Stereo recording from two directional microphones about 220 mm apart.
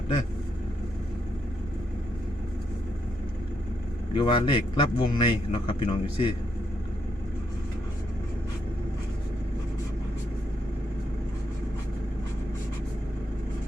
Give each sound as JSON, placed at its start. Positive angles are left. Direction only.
{"t": 4.1, "sound": "a man's voice", "side_deg": 20}